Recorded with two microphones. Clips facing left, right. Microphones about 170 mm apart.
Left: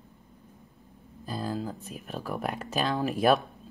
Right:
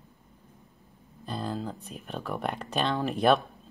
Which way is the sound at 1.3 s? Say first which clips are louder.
Left 1 dB; 5° left (ahead or behind).